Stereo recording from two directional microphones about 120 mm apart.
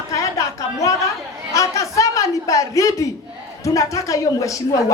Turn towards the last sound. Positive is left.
turn(degrees=25)  # may be behind; listen again after turning